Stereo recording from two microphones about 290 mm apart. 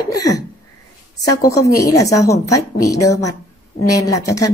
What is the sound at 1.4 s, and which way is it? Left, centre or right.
A woman's voice, centre.